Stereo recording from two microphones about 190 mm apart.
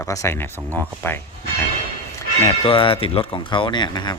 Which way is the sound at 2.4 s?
25° left (ahead or behind).